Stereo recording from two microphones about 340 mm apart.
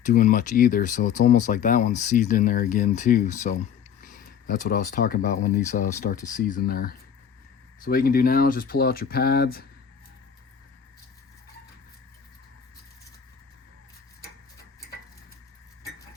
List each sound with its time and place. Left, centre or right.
0.0 s speech: left